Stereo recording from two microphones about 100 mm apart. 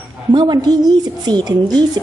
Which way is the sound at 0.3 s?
50° right (ahead or behind).